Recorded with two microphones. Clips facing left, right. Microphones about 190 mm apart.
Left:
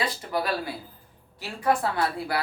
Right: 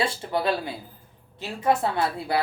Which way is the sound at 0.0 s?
25° right (ahead or behind).